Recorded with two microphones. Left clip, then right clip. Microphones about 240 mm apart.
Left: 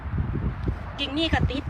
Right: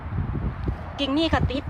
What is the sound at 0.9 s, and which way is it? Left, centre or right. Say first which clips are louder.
Speech: right 3 dB; centre.